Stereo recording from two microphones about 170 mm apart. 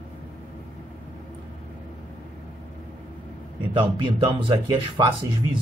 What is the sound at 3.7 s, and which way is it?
Speech, 30° right (ahead or behind).